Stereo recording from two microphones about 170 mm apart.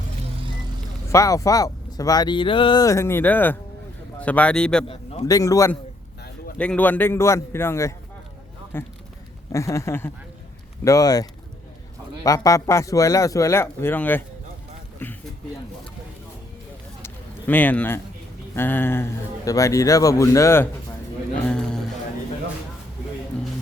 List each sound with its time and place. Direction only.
1.1 s a man's voice: 20° left (ahead or behind)
5.3 s speech: 20° left (ahead or behind)
6.6 s a man's voice: 10° left (ahead or behind)
17.0 s a sound: 10° left (ahead or behind)
18.5 s a man's voice: 10° left (ahead or behind)
21.4 s a man's voice: 5° left (ahead or behind)